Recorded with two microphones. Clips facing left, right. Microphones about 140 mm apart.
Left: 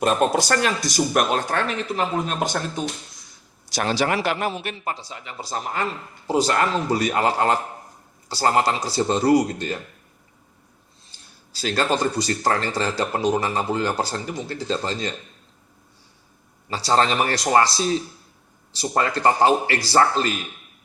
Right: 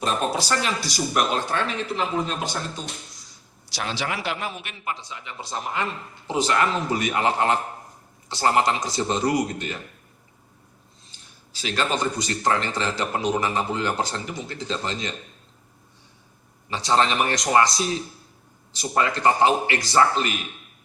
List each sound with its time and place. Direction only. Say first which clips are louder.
0.0 s speech: left 5 dB; 50° left (ahead or behind); by 9.7 s 35° left (ahead or behind)
11.6 s speech: left 3 dB; 35° left (ahead or behind)
16.6 s speech: left 1 dB; 35° left (ahead or behind)